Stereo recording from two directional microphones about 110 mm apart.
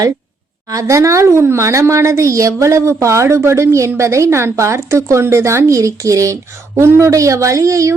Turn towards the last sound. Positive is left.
turn(degrees=-30)  # may be behind; listen again after turning